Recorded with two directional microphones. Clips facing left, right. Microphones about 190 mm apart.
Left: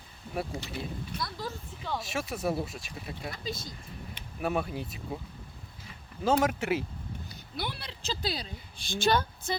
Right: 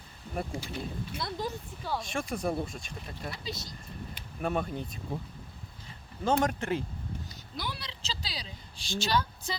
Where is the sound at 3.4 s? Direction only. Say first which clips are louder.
Left 2 dB; 50° left (ahead or behind).